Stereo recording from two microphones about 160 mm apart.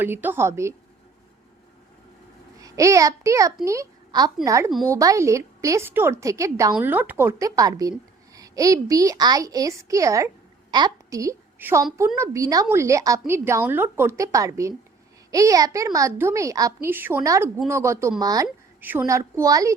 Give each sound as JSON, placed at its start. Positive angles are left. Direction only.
{"t": 0.0, "sound": "a woman's voice", "side_deg": -10}
{"t": 2.6, "sound": "a child's voice", "side_deg": -20}